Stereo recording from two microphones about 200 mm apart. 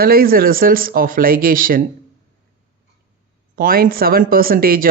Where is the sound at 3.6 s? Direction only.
45° right (ahead or behind).